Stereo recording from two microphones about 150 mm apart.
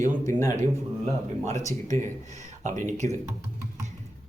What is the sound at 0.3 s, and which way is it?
Speech, 20° left (ahead or behind).